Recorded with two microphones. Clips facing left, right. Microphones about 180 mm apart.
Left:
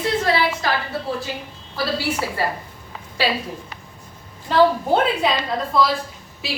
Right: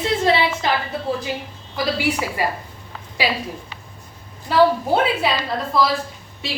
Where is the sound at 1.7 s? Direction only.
15° right (ahead or behind).